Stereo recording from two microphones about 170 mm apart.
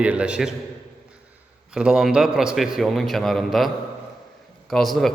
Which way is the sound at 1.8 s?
5° right (ahead or behind).